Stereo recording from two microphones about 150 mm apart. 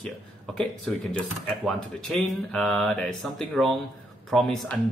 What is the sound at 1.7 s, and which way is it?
Speech, 5° left (ahead or behind).